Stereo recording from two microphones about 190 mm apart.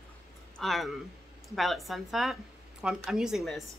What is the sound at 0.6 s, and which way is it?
A woman's voice, centre (ahead or behind).